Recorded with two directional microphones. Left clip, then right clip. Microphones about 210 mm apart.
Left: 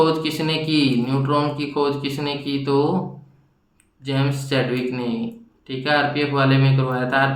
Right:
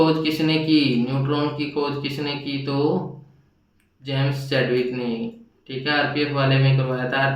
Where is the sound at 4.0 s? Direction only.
30° left (ahead or behind).